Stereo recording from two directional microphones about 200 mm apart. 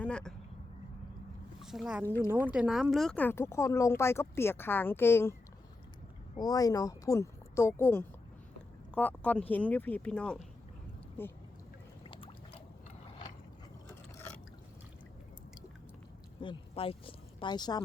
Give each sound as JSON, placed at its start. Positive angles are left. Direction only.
{"t": 0.0, "sound": "speech", "side_deg": 5}
{"t": 1.6, "sound": "speech", "side_deg": 0}
{"t": 12.0, "sound": "boat", "side_deg": 25}
{"t": 16.4, "sound": "speech", "side_deg": 25}